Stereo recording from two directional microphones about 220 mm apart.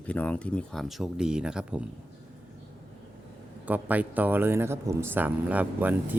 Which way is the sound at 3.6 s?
5° right (ahead or behind).